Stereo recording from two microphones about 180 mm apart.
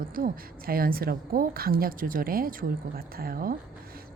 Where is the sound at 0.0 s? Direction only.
50° right (ahead or behind).